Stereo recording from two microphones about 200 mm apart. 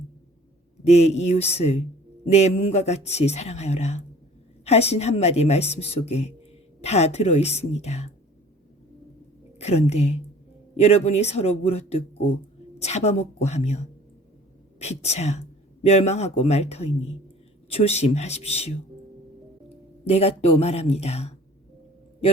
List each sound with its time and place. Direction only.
0.9 s speech: 35° left (ahead or behind)
9.6 s a woman's voice: 30° left (ahead or behind)
20.1 s speech: 30° left (ahead or behind)